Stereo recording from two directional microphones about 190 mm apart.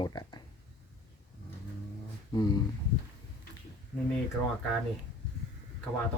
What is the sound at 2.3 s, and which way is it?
Speech, 20° left (ahead or behind).